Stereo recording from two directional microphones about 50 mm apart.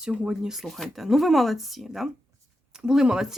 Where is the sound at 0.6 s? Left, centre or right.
Centre.